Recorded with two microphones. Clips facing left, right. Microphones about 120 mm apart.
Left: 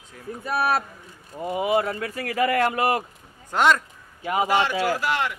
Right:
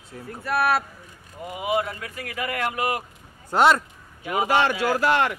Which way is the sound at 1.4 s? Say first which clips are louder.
Left 3 dB; 35° left (ahead or behind).